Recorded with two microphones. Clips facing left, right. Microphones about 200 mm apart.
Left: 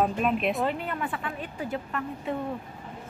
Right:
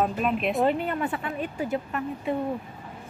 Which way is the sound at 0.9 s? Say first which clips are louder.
Right 4 dB; 30° right (ahead or behind).